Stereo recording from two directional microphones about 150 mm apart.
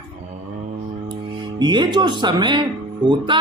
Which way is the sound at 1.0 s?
30° right (ahead or behind).